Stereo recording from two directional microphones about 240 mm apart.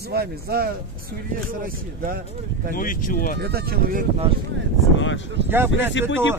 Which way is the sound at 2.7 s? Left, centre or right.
Left.